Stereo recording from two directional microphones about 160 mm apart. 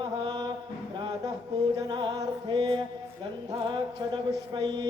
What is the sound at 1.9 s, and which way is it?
Music, 25° right (ahead or behind).